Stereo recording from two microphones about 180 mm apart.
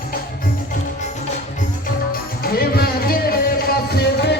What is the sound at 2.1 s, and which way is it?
Music, 55° left (ahead or behind).